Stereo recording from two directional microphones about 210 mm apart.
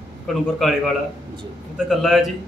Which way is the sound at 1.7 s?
Centre (ahead or behind).